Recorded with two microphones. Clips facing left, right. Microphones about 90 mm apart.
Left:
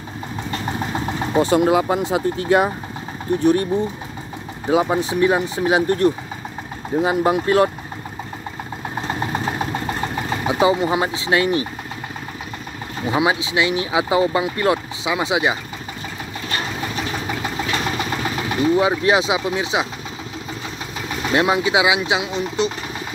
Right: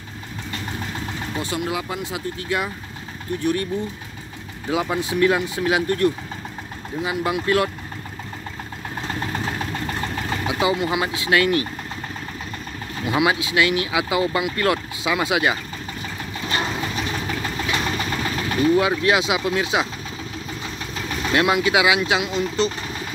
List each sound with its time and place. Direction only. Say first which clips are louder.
1.0 s speech: left 13 dB; 35° left (ahead or behind)
4.6 s speech: left 5 dB; 30° left (ahead or behind)
8.9 s vehicle: left 3 dB; 20° left (ahead or behind)
10.4 s speech: left 5 dB; 30° left (ahead or behind)
13.0 s speech: left 1 dB; 25° left (ahead or behind)
16.8 s vehicle: left 1 dB; 10° left (ahead or behind)
17.7 s speech: left 1 dB; 15° left (ahead or behind)
21.3 s speech: left 1 dB; 25° left (ahead or behind)